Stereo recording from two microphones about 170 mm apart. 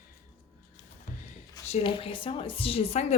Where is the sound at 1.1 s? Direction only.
55° left (ahead or behind).